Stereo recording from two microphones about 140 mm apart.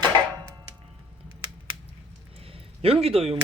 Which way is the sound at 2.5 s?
45° right (ahead or behind).